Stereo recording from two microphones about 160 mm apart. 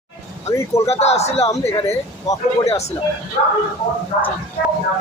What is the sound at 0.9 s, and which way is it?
Speech, 40° left (ahead or behind).